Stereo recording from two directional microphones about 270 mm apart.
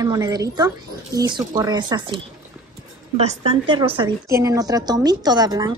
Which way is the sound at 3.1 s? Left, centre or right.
Right.